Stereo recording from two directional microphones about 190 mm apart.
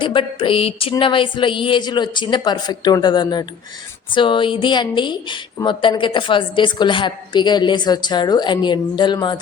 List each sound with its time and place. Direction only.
0.0 s speech: 25° left (ahead or behind)